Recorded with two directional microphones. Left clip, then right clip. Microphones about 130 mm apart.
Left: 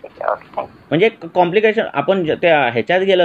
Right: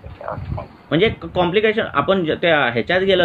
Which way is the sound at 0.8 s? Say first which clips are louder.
Left 2 dB; 30° left (ahead or behind).